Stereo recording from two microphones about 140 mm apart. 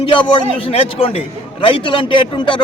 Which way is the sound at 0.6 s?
40° left (ahead or behind).